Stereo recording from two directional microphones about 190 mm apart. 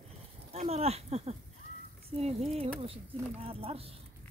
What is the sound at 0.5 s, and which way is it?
Speech, 35° right (ahead or behind).